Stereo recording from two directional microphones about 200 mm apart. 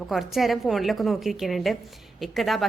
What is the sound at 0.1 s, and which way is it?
A woman's voice, centre (ahead or behind).